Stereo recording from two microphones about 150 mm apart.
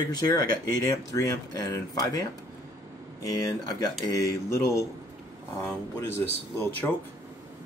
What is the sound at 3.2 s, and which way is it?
Speech, 25° left (ahead or behind).